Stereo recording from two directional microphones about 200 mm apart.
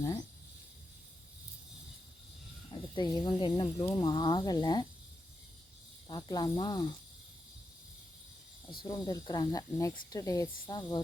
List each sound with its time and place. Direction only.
2.9 s speech: 20° left (ahead or behind)
6.1 s speech: 20° left (ahead or behind)
8.8 s speech: 20° left (ahead or behind)